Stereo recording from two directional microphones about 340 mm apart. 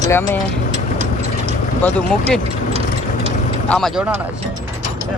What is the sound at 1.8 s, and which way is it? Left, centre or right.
Speech, centre.